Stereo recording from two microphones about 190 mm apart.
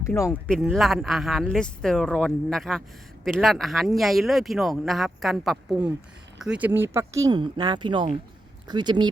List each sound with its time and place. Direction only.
0.0 s speech: 15° left (ahead or behind)
0.5 s speech: centre (ahead or behind); by 9.0 s 25° right (ahead or behind)